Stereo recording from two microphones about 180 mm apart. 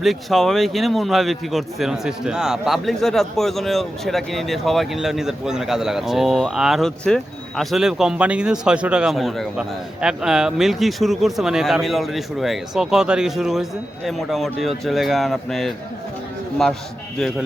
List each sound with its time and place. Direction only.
0.0 s a man's voice: centre (ahead or behind)
17.2 s a man's voice: centre (ahead or behind)